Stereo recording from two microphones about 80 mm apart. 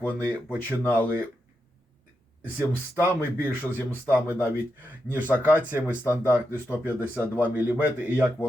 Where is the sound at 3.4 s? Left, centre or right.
Left.